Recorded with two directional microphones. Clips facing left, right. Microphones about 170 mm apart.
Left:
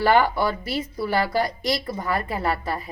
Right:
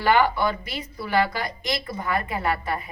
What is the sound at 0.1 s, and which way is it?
A woman's voice, 40° left (ahead or behind).